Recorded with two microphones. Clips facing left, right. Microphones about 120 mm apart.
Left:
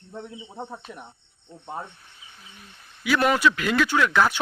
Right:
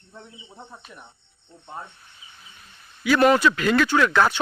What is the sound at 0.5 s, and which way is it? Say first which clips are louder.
Speech: left 7 dB; 45° left (ahead or behind).